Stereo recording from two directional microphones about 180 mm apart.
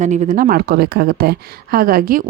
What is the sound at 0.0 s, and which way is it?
A woman's voice, 40° right (ahead or behind).